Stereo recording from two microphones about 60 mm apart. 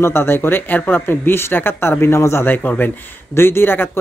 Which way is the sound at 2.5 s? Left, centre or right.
Left.